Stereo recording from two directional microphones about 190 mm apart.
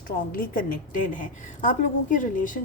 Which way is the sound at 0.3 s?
45° left (ahead or behind).